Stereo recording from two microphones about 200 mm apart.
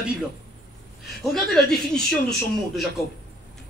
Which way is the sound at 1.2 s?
Centre (ahead or behind).